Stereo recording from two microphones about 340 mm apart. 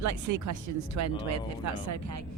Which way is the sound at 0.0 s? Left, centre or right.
Right.